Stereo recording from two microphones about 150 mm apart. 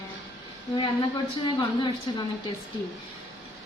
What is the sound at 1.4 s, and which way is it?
Speech, 30° left (ahead or behind).